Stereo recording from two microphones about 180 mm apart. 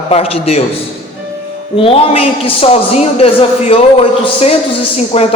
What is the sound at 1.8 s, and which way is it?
A man's voice, 30° left (ahead or behind).